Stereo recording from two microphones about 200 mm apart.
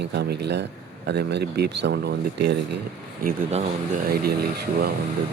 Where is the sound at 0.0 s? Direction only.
55° right (ahead or behind).